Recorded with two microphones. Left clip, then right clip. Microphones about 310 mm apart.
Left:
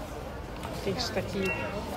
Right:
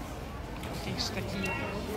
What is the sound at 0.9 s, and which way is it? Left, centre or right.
Speech, centre.